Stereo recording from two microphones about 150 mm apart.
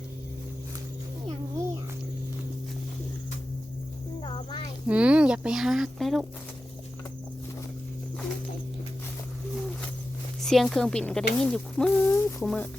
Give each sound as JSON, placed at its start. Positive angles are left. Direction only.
{"t": 4.2, "sound": "a sound", "side_deg": 30}
{"t": 4.9, "sound": "speech", "side_deg": -10}
{"t": 10.4, "sound": "speech", "side_deg": 0}